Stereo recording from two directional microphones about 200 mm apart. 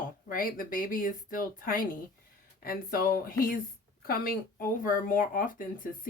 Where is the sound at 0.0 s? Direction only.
45° left (ahead or behind).